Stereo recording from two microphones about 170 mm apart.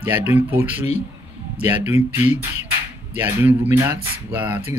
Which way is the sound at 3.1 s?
10° right (ahead or behind).